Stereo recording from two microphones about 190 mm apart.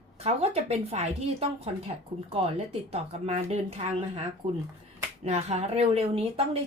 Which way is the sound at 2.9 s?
30° right (ahead or behind).